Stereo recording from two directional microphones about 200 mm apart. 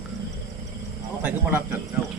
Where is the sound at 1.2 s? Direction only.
5° right (ahead or behind).